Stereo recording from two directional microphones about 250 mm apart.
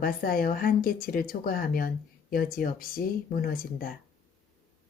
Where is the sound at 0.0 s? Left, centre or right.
Left.